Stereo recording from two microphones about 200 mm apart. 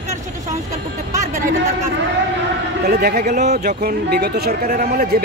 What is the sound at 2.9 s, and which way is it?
Speech, 50° right (ahead or behind).